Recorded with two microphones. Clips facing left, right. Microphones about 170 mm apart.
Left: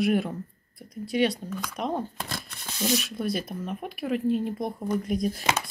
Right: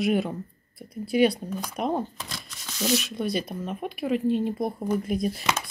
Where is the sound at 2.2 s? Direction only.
55° left (ahead or behind).